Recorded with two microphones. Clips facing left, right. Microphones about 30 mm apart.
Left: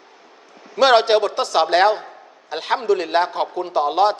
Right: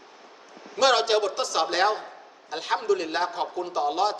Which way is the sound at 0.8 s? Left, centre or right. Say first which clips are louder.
Left 7 dB; left.